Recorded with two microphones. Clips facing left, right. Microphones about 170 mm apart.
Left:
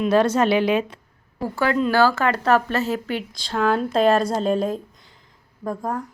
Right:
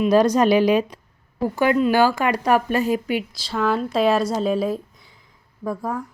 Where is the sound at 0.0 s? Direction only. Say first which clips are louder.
Right 2 dB; 15° right (ahead or behind).